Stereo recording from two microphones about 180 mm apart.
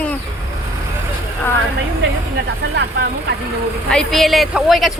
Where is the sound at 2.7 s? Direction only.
70° right (ahead or behind).